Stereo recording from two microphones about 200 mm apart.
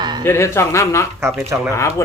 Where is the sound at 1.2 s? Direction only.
10° right (ahead or behind).